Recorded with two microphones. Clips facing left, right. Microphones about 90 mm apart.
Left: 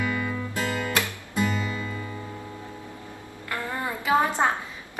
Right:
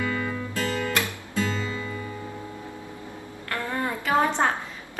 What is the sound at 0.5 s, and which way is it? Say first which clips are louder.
Music: right 1 dB; 20° left (ahead or behind).